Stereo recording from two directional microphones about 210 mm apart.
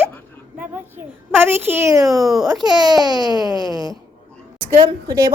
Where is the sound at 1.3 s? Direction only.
10° right (ahead or behind).